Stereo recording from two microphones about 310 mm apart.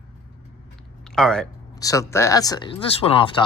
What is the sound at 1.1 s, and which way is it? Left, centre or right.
Speech, centre.